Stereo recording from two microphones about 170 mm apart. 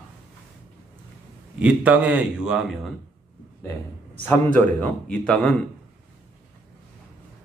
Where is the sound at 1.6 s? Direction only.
5° right (ahead or behind).